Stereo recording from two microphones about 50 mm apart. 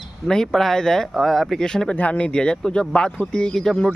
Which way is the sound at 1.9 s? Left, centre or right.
Left.